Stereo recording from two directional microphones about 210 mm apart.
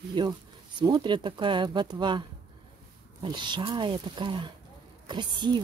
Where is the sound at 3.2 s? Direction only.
20° right (ahead or behind).